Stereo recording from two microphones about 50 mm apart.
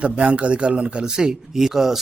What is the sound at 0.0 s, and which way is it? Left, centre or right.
Speech, right.